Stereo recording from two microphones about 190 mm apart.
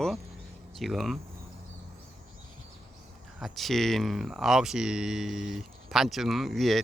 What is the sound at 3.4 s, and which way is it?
Speech, centre (ahead or behind).